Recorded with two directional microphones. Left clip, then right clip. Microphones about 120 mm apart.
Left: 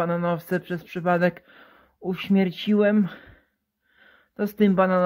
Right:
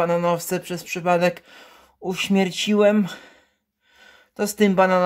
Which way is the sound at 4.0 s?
20° right (ahead or behind).